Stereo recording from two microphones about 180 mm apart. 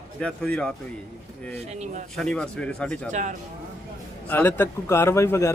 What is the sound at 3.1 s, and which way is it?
Speech, 45° right (ahead or behind).